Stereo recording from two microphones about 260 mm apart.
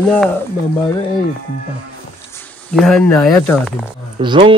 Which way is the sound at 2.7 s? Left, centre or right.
Centre.